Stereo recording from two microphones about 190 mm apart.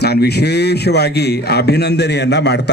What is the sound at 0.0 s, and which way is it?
Speech, 55° left (ahead or behind).